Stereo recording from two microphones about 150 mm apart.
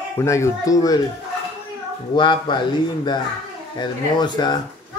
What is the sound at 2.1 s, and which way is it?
Speech, 30° left (ahead or behind).